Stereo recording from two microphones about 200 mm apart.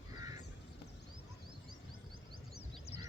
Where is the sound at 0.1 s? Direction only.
20° right (ahead or behind).